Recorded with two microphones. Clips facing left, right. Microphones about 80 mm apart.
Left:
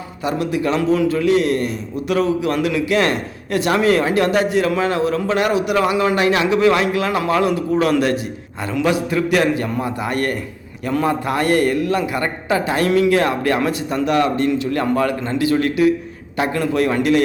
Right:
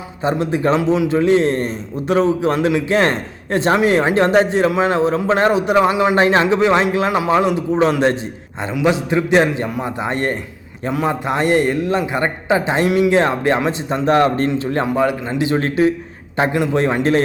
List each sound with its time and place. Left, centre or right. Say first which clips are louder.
0.2 s a man's voice: right 2 dB; right
14.8 s a man's voice: right 1 dB; centre; by 17.2 s right